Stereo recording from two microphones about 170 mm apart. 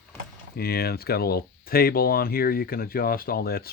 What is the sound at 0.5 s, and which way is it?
Speech, 65° left (ahead or behind).